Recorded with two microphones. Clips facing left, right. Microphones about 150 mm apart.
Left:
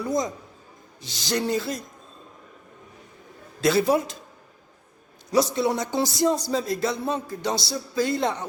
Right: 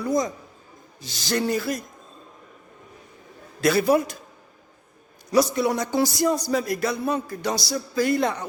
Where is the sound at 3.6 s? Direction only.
20° left (ahead or behind).